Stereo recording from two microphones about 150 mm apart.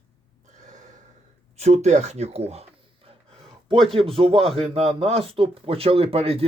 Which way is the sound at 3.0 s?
40° right (ahead or behind).